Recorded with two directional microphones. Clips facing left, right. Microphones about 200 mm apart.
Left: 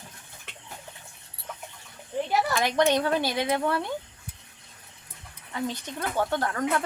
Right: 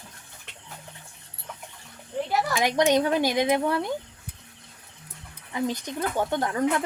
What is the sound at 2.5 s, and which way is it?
Speech, 15° right (ahead or behind).